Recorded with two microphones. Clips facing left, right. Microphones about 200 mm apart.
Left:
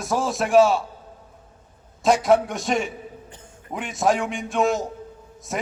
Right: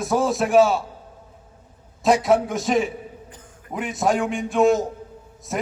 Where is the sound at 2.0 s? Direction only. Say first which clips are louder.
Even; centre (ahead or behind).